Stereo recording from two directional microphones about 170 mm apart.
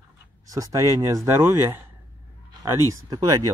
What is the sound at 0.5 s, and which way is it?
Speech, 20° right (ahead or behind).